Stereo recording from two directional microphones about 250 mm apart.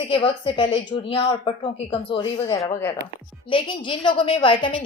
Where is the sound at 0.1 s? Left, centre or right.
Left.